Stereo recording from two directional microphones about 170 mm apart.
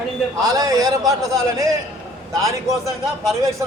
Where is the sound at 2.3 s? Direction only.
20° right (ahead or behind).